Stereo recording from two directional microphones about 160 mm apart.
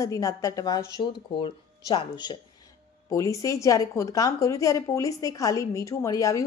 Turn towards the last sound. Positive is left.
turn(degrees=20)  # may be behind; listen again after turning